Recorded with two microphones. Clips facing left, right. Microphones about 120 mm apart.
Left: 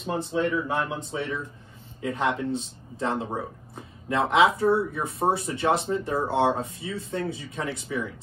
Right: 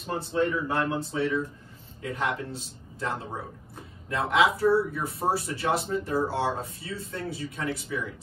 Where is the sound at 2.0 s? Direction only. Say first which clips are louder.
Left 4 dB; 25° left (ahead or behind).